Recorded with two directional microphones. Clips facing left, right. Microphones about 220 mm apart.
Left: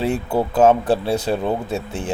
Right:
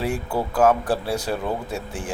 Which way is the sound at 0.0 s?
25° left (ahead or behind).